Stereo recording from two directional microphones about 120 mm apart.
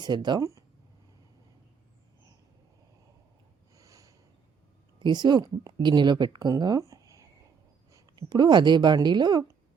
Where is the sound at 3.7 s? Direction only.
25° right (ahead or behind).